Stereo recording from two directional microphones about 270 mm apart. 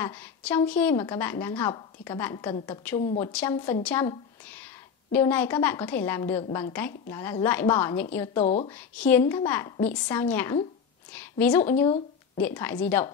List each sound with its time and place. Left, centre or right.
0.0 s a woman's voice: centre
2.5 s a woman's voice: left
3.2 s a woman's voice: centre
8.4 s a woman's voice: left
8.6 s a woman's voice: centre